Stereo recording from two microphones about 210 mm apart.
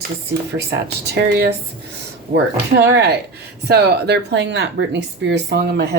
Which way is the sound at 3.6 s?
50° right (ahead or behind).